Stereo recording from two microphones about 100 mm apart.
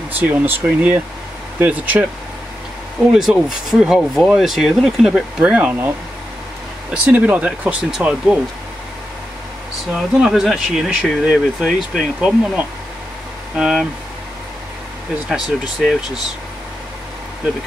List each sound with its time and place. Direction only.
0.1 s speech: 20° right (ahead or behind)
6.9 s speech: 15° right (ahead or behind)
9.9 s speech: 5° right (ahead or behind)
15.2 s speech: centre (ahead or behind)